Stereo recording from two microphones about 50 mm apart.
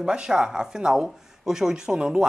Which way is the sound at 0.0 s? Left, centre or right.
Centre.